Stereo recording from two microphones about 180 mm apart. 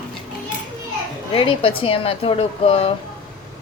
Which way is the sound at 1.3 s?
30° left (ahead or behind).